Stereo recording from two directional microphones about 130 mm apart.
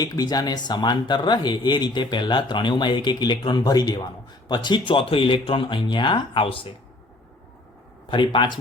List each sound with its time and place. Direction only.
0.0 s speech: 30° left (ahead or behind)
8.1 s speech: 40° left (ahead or behind)